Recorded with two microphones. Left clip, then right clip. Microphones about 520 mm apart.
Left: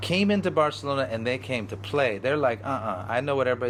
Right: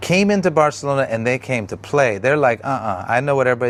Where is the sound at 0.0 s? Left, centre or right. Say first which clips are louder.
Right 8 dB; right.